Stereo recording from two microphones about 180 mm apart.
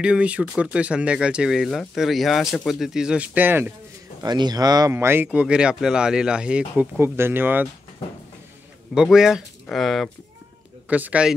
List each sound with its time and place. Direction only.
0.0 s speech: 5° right (ahead or behind)
4.2 s speech: 25° right (ahead or behind)
8.9 s speech: 5° right (ahead or behind)